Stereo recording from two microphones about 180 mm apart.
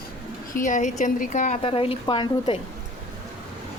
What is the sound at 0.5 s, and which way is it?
A woman's voice, 45° left (ahead or behind).